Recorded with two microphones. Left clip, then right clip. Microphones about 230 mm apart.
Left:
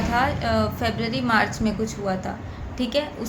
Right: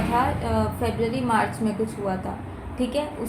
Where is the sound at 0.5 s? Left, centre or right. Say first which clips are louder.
Left 2 dB; left.